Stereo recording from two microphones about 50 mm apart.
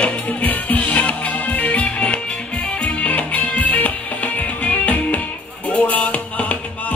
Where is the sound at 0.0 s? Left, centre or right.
Left.